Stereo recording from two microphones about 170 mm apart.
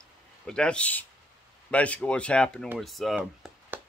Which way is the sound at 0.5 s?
5° left (ahead or behind).